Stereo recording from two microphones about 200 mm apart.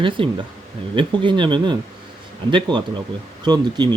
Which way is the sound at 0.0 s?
25° right (ahead or behind).